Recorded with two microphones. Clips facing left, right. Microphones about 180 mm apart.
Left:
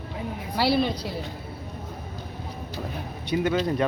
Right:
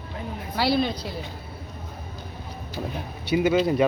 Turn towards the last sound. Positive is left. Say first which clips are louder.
# right 3 dB
turn(degrees=-10)  # may be behind; listen again after turning